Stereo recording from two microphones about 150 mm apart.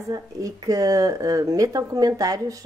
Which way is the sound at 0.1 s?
25° right (ahead or behind).